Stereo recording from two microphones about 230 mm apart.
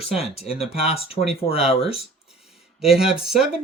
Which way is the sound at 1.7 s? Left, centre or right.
Left.